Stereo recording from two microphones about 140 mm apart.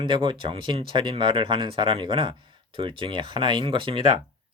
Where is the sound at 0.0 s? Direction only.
35° right (ahead or behind).